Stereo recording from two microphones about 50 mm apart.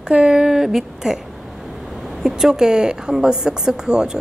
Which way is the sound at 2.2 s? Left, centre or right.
Centre.